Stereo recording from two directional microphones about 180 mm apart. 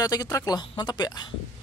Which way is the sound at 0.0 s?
20° left (ahead or behind).